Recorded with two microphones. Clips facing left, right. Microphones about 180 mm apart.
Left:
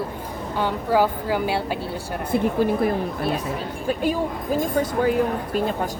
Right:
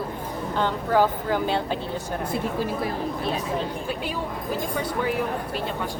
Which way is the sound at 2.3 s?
55° left (ahead or behind).